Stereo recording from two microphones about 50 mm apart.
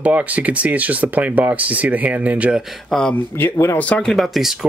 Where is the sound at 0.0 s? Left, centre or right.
Right.